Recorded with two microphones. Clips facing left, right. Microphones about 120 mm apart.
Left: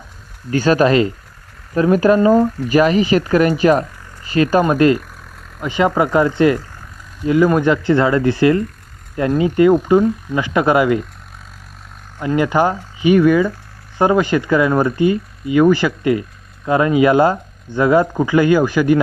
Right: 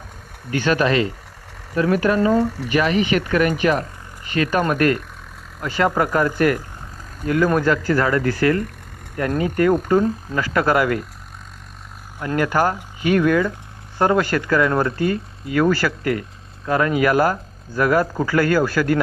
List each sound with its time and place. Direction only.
0.5 s speech: 40° left (ahead or behind); by 11.0 s 15° left (ahead or behind)
12.2 s speech: 15° left (ahead or behind)